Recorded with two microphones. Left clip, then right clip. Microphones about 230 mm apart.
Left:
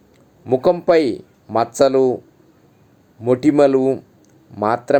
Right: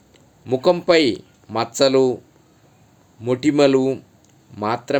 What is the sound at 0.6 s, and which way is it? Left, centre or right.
Speech, centre.